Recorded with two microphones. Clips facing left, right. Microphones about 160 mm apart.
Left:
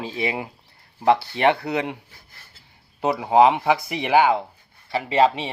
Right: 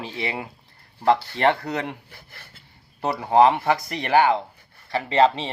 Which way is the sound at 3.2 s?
10° left (ahead or behind).